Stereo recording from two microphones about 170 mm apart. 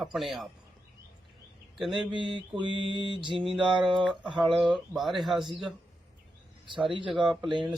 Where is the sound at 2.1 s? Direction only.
30° right (ahead or behind).